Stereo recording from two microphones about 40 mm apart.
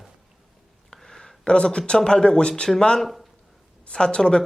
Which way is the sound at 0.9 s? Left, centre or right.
Centre.